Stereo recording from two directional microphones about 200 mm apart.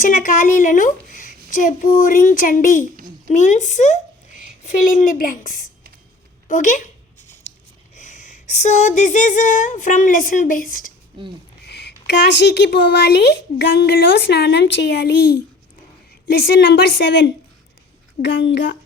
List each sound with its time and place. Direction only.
0.0 s a woman's voice: 40° left (ahead or behind)
6.5 s a sound: 40° left (ahead or behind)
7.9 s speech: 40° left (ahead or behind)
11.6 s speech: 55° left (ahead or behind)
16.5 s speech: 55° left (ahead or behind)